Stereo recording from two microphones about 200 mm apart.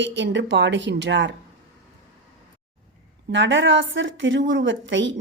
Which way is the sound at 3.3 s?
65° right (ahead or behind).